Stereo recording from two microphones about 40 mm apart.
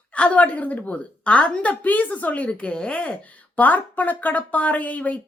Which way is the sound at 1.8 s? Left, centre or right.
Left.